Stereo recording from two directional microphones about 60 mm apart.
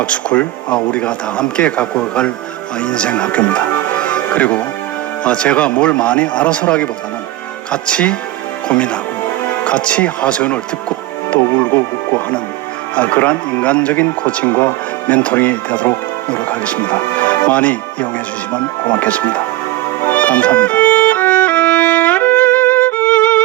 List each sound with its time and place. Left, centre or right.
0.0 s speech: left
20.1 s music: left